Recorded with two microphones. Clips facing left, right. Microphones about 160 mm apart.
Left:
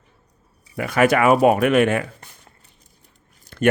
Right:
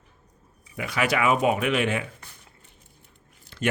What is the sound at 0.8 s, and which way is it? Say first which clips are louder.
Speech: left 8 dB; 50° left (ahead or behind).